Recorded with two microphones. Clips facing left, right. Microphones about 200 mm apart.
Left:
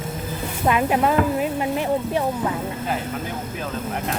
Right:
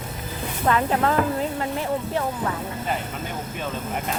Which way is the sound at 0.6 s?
15° left (ahead or behind).